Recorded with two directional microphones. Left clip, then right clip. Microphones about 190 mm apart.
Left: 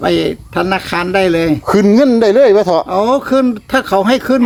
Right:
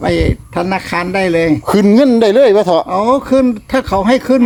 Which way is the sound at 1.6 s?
20° right (ahead or behind).